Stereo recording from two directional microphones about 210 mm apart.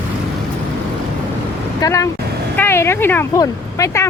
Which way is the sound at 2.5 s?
10° left (ahead or behind).